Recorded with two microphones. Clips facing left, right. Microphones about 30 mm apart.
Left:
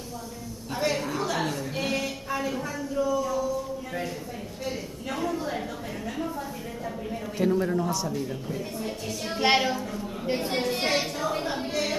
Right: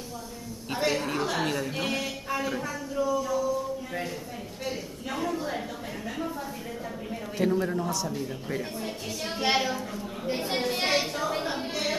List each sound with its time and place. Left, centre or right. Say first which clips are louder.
1.0 s chuckle: even; right
1.9 s a sound: left 1 dB; centre
7.3 s a woman's voice: left 2 dB; centre
9.4 s a woman's voice: left 3 dB; centre
10.3 s a woman's voice: left 2 dB; centre
10.7 s a woman's voice: even; centre